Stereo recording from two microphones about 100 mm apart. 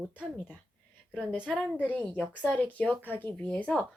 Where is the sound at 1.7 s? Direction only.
15° left (ahead or behind).